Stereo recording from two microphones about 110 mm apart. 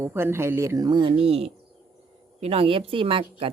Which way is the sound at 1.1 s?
65° right (ahead or behind).